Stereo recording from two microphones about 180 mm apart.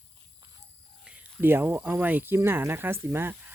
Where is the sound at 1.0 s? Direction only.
10° right (ahead or behind).